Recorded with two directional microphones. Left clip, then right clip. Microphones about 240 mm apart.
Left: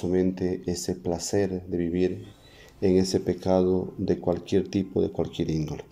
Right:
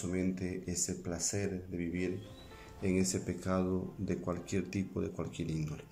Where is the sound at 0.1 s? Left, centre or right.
Left.